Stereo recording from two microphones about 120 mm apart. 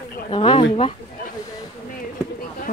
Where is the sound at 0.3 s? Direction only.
45° left (ahead or behind).